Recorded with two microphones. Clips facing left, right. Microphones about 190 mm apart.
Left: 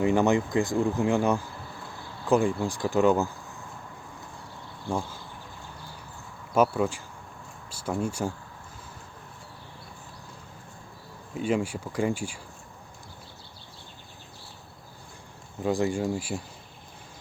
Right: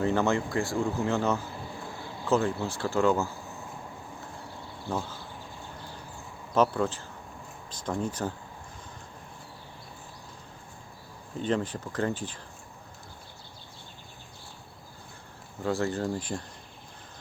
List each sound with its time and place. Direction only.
0.0 s speech: 15° left (ahead or behind)
4.9 s speech: 10° left (ahead or behind)
6.5 s speech: 10° left (ahead or behind)
11.3 s speech: 10° left (ahead or behind)
15.6 s speech: 15° left (ahead or behind)